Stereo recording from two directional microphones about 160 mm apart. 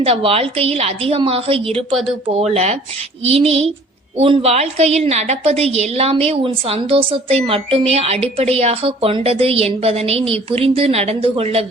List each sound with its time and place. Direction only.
0.0 s a woman's voice: 35° right (ahead or behind)